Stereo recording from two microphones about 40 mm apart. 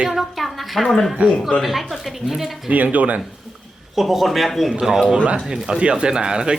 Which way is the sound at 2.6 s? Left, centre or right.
Right.